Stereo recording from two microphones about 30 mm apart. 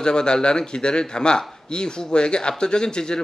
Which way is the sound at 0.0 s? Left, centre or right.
Left.